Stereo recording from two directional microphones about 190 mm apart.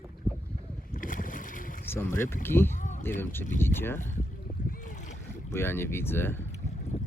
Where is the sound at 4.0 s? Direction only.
40° left (ahead or behind).